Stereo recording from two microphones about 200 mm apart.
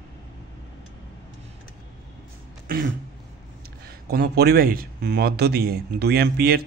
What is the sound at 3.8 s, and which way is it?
A man's voice, 50° right (ahead or behind).